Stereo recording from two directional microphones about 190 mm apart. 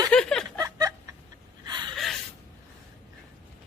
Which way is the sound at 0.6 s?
20° right (ahead or behind).